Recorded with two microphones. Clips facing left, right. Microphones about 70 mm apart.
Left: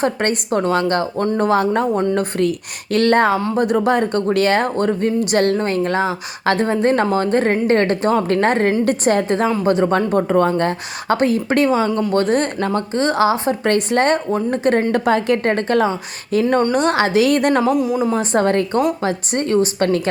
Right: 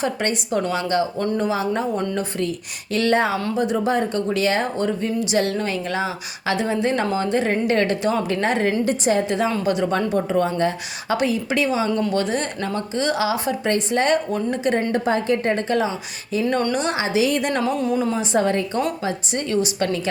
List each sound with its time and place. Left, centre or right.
0.0 s a woman's voice: left
5.5 s a woman's voice: left
8.8 s speech: left
9.6 s a woman's voice: left
13.7 s a woman's voice: left
17.7 s speech: centre
18.1 s a woman's voice: left